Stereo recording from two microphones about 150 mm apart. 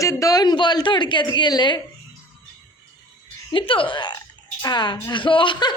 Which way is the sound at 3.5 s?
35° left (ahead or behind).